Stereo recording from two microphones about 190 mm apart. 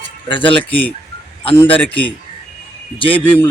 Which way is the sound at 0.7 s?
10° left (ahead or behind).